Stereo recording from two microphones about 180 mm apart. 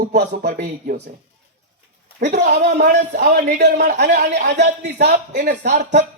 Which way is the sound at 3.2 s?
60° right (ahead or behind).